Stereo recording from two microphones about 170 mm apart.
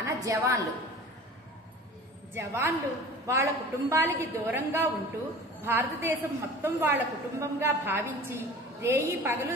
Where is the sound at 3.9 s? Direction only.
15° right (ahead or behind).